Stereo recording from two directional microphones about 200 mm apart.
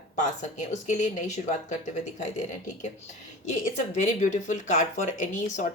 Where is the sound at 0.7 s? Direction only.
35° left (ahead or behind).